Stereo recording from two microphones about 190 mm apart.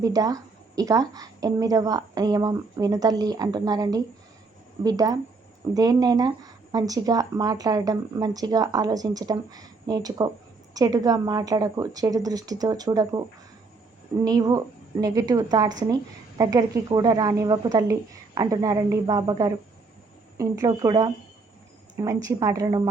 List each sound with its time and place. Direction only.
0.0 s speech: 20° right (ahead or behind)
14.3 s speech: 20° right (ahead or behind)